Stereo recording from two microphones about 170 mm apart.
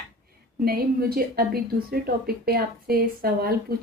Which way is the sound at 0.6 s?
60° right (ahead or behind).